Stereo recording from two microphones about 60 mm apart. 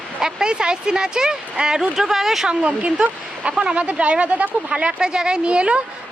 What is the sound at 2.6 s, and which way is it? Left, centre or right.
Speech, centre.